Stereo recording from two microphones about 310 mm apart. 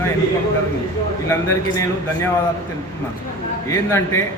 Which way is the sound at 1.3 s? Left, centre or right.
Centre.